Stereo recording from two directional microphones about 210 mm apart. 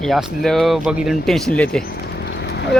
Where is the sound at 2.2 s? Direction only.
55° left (ahead or behind).